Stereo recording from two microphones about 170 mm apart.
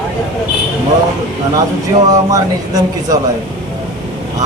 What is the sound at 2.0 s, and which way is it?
Speech, 20° right (ahead or behind).